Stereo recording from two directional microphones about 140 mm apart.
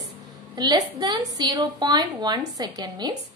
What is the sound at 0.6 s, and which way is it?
A woman's voice, 30° right (ahead or behind).